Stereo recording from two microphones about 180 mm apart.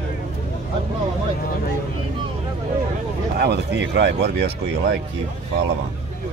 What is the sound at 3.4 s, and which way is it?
Speech, 65° right (ahead or behind).